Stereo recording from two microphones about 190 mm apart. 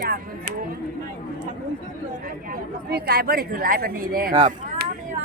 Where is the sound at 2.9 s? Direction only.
55° right (ahead or behind).